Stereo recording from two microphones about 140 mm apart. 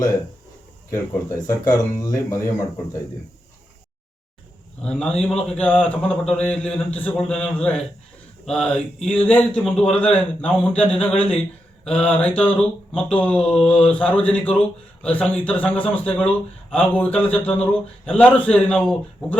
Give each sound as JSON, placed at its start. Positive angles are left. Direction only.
{"t": 0.9, "sound": "speech", "side_deg": 20}
{"t": 4.8, "sound": "a man's voice", "side_deg": 5}